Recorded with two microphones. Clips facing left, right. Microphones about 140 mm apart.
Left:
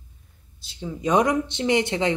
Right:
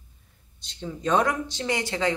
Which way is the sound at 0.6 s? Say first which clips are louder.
Left 2 dB; 5° left (ahead or behind).